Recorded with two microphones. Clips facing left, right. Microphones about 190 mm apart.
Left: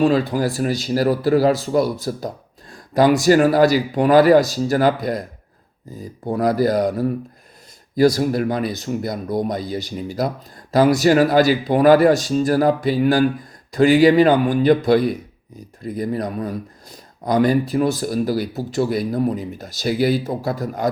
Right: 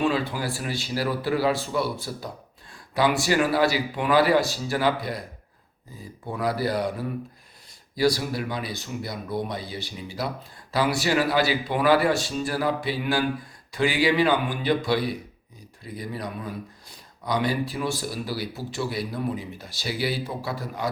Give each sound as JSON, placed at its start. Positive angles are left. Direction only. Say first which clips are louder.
{"t": 0.0, "sound": "speech", "louder": "left 8 dB", "side_deg": 40}
{"t": 6.2, "sound": "speech", "louder": "left 8 dB", "side_deg": 45}